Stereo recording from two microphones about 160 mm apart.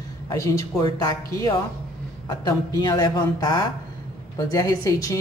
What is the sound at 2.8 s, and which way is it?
A woman's voice, 25° left (ahead or behind).